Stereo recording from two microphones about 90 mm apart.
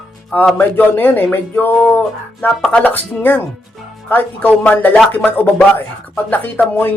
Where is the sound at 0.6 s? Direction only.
20° left (ahead or behind).